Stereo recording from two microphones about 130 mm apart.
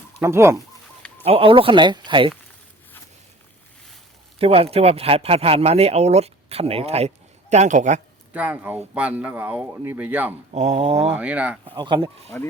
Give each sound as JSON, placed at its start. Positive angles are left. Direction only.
{"t": 0.2, "sound": "speech", "side_deg": -20}
{"t": 1.2, "sound": "speech", "side_deg": -45}
{"t": 4.4, "sound": "speech", "side_deg": -50}
{"t": 7.5, "sound": "speech", "side_deg": -65}
{"t": 8.3, "sound": "speech", "side_deg": -10}
{"t": 10.5, "sound": "mantra", "side_deg": -55}
{"t": 11.1, "sound": "speech", "side_deg": -10}
{"t": 11.6, "sound": "speech", "side_deg": -40}